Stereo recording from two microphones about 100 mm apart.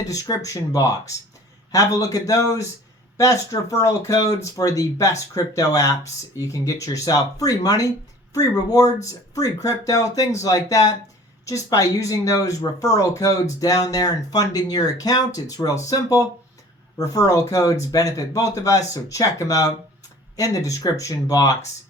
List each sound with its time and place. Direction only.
0.1 s speech: 35° left (ahead or behind)